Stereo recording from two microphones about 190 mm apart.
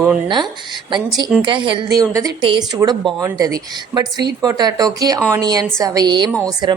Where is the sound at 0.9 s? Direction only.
25° right (ahead or behind).